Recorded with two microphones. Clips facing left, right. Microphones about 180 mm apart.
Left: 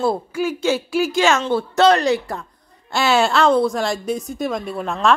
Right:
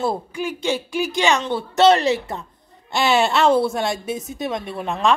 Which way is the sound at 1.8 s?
25° right (ahead or behind).